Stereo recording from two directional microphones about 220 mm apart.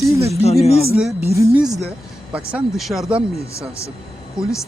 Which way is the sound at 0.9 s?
5° right (ahead or behind).